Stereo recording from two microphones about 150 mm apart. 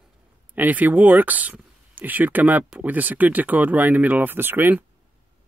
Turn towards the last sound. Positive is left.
turn(degrees=-15)  # may be behind; listen again after turning